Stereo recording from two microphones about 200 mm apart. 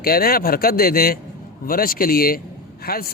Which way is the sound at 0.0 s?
50° left (ahead or behind).